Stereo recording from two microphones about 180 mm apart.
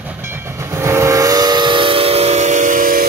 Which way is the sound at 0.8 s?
15° right (ahead or behind).